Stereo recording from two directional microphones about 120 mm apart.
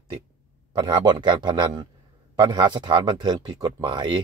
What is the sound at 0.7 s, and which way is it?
Speech, 35° right (ahead or behind).